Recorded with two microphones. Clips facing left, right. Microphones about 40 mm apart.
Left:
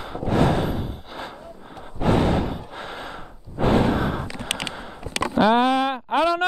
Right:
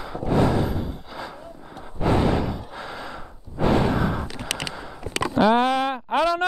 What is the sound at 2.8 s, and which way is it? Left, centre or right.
Sigh, left.